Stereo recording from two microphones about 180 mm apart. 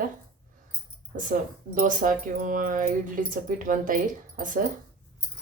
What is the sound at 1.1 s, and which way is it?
Speech, 45° right (ahead or behind).